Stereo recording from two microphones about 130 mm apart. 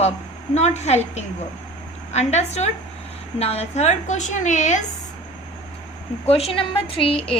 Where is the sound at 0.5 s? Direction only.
60° left (ahead or behind).